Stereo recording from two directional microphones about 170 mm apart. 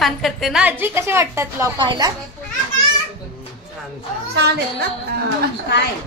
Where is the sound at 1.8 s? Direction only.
30° right (ahead or behind).